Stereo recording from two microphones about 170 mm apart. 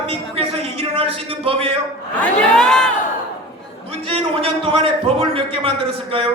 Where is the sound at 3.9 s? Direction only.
35° right (ahead or behind).